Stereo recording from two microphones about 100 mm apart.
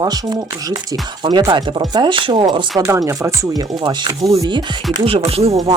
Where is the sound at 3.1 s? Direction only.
30° right (ahead or behind); by 4.1 s 50° right (ahead or behind).